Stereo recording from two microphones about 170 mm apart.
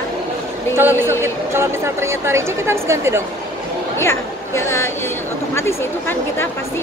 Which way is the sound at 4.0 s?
15° left (ahead or behind).